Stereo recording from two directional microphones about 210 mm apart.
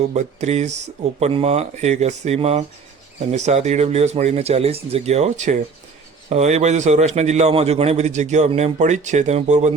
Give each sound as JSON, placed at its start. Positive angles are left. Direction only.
{"t": 0.1, "sound": "a man's voice", "side_deg": -30}